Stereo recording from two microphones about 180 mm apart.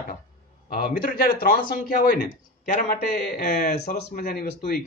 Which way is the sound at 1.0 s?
50° left (ahead or behind).